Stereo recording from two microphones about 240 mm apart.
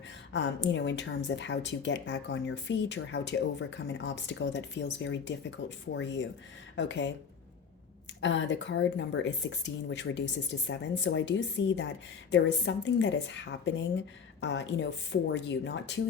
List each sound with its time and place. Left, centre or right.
0.3 s a woman's voice: left
8.2 s a woman's voice: left